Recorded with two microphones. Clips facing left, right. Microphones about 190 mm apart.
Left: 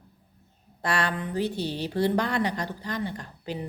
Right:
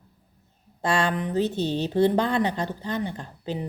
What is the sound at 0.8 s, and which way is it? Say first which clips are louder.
A woman's voice: right 4 dB; 25° right (ahead or behind).